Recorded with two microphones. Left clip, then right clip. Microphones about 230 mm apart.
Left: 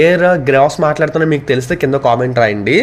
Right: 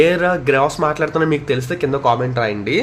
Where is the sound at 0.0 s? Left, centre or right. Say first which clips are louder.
Left 4 dB; centre.